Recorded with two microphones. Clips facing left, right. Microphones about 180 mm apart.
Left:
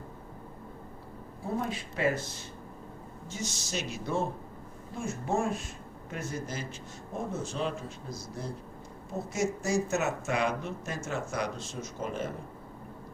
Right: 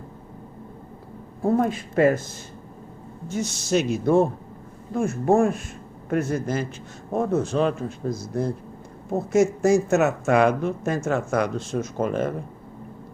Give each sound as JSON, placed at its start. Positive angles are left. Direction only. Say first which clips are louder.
{"t": 1.4, "sound": "speech", "louder": "right 12 dB", "side_deg": -55}
{"t": 3.3, "sound": "speech", "louder": "right 13 dB", "side_deg": -60}